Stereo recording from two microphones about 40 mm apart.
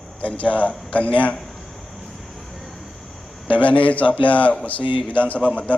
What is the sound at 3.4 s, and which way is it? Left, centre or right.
A man's voice, left.